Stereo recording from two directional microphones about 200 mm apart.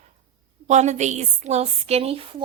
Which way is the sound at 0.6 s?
35° right (ahead or behind).